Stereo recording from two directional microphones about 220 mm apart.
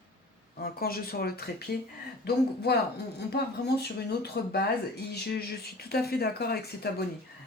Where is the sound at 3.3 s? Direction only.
45° left (ahead or behind).